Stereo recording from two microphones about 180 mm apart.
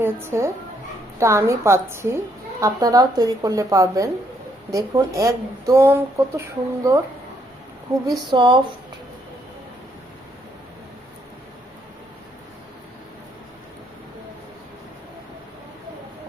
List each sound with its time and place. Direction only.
0.0 s speech: 15° right (ahead or behind)
8.3 s speech: 25° right (ahead or behind)